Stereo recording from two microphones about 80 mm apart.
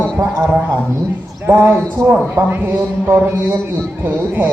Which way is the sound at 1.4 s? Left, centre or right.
Right.